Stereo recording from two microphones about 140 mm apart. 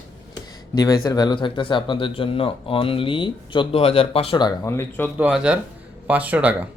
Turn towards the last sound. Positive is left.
turn(degrees=-10)  # may be behind; listen again after turning